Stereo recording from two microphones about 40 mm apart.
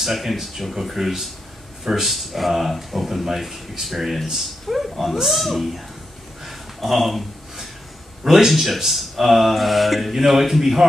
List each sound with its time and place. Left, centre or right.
0.0 s speech: centre
6.4 s a sound: centre
8.2 s speech: centre